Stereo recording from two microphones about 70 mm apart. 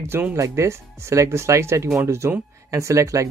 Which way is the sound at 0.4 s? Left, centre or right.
Right.